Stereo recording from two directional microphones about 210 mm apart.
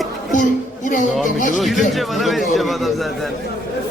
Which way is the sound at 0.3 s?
35° left (ahead or behind).